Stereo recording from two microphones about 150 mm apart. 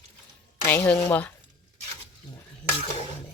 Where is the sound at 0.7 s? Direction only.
10° left (ahead or behind).